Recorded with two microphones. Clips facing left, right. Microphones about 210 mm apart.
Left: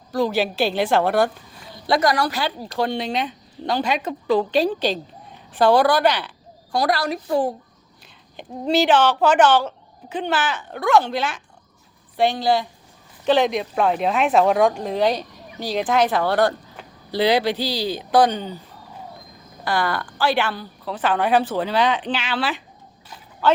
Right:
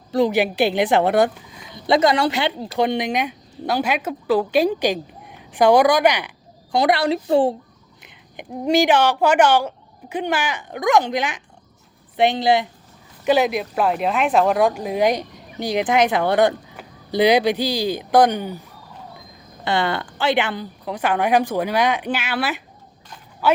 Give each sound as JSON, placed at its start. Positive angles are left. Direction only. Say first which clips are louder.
{"t": 0.1, "sound": "a woman's voice", "louder": "right 3 dB", "side_deg": -20}
{"t": 8.0, "sound": "a woman's voice", "louder": "right 2 dB", "side_deg": -15}
{"t": 13.2, "sound": "speech", "louder": "even", "side_deg": -10}
{"t": 19.6, "sound": "speech", "louder": "right 2 dB", "side_deg": -25}